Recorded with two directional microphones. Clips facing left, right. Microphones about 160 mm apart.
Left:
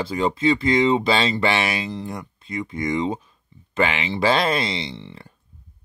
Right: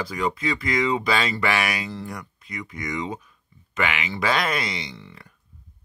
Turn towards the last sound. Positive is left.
turn(degrees=30)  # may be behind; listen again after turning